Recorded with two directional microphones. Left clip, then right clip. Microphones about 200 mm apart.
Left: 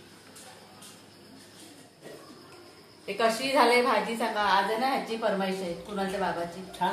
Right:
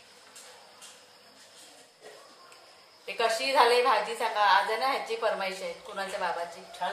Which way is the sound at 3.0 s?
15° right (ahead or behind).